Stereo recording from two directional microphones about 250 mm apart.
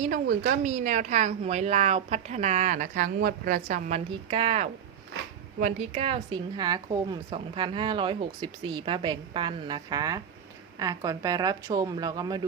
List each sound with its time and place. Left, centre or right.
0.0 s a woman's voice: right; by 12.4 s centre